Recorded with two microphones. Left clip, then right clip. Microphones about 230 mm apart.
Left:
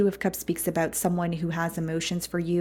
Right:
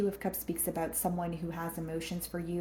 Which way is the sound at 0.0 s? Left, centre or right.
Left.